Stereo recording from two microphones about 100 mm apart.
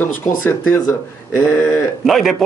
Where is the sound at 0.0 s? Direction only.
25° left (ahead or behind).